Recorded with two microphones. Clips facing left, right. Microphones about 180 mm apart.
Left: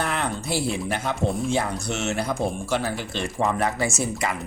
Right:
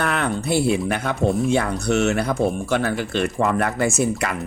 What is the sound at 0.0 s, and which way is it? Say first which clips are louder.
Speech: right 4 dB; 65° right (ahead or behind).